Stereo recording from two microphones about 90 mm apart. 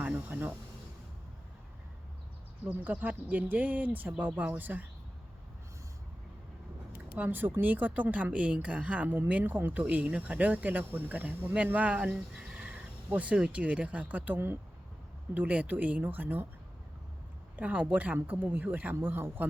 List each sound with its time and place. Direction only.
0.0 s speech: 15° right (ahead or behind)
2.6 s speech: 15° right (ahead or behind)
7.2 s speech: 25° right (ahead or behind)
17.6 s speech: 15° right (ahead or behind)